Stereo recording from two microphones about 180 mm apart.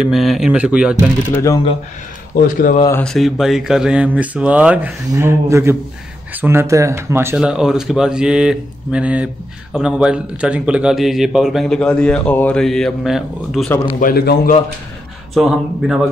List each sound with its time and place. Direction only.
0.0 s speech: centre (ahead or behind)
1.3 s speech: 15° left (ahead or behind)
2.3 s speech: 50° left (ahead or behind)
2.9 s speech: 5° left (ahead or behind)
13.9 s a man's voice: 55° left (ahead or behind)
15.3 s speech: centre (ahead or behind)